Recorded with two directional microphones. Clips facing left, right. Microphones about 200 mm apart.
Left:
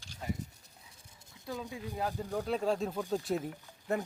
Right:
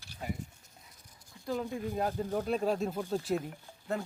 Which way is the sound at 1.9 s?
20° right (ahead or behind).